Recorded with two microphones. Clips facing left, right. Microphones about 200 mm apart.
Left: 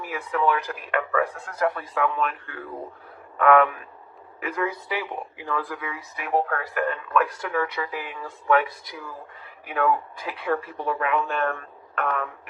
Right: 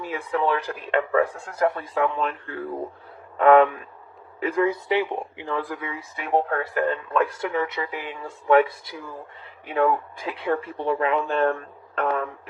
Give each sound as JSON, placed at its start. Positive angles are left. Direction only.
{"t": 0.0, "sound": "speech", "side_deg": -30}